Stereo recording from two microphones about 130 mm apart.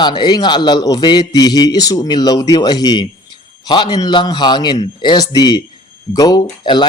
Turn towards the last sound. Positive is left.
turn(degrees=30)  # may be behind; listen again after turning